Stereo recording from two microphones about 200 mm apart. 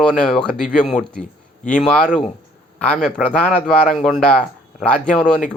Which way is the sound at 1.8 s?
5° left (ahead or behind).